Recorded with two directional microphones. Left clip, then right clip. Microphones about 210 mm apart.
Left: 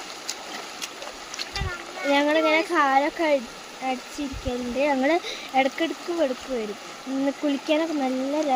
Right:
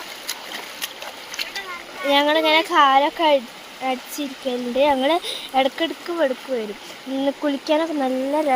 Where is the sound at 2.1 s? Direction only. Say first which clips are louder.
Right 4 dB; centre (ahead or behind); by 4.0 s 20° right (ahead or behind).